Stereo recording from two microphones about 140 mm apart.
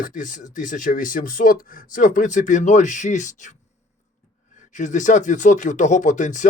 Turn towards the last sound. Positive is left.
turn(degrees=65)  # may be behind; listen again after turning